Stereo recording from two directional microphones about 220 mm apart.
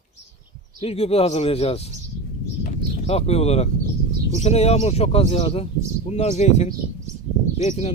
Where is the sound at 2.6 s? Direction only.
30° left (ahead or behind).